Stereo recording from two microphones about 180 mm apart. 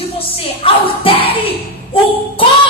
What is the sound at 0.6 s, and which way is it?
Speech, 30° left (ahead or behind).